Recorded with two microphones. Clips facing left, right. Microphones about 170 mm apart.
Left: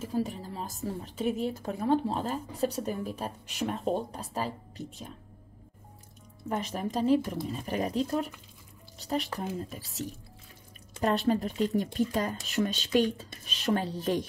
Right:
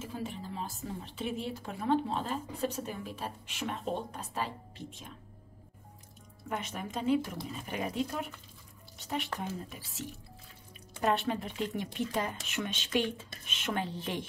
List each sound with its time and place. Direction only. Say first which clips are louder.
0.0 s a woman's voice: left 7 dB; 40° left (ahead or behind)
6.5 s a woman's voice: left 5 dB; 35° left (ahead or behind)